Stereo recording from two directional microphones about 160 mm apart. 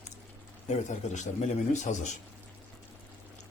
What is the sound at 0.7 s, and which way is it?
A man's voice, 45° left (ahead or behind).